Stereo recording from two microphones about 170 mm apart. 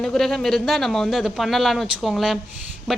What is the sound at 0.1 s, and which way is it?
A woman's voice, centre (ahead or behind).